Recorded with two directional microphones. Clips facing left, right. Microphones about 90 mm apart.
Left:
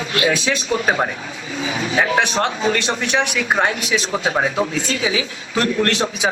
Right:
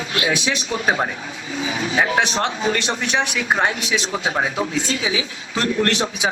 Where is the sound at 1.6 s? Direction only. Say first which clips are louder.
Left 1 dB; 20° right (ahead or behind).